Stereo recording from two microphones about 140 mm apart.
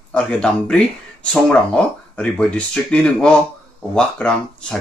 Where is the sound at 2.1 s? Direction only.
5° left (ahead or behind).